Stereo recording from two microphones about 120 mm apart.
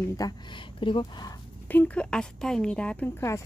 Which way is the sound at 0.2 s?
30° left (ahead or behind).